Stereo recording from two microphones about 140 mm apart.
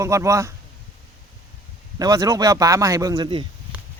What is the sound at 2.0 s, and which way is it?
Speech, 25° right (ahead or behind).